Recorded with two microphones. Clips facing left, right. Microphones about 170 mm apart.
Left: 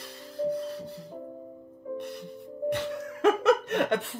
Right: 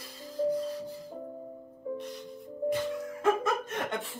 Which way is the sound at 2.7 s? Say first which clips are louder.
Even; 75° left (ahead or behind).